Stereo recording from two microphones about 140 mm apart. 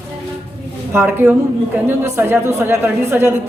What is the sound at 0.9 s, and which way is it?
Speech, 15° right (ahead or behind).